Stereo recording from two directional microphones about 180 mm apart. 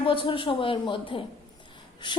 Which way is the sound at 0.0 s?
30° left (ahead or behind).